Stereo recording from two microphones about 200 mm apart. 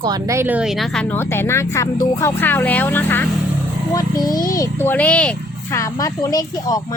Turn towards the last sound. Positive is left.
turn(degrees=20)  # may be behind; listen again after turning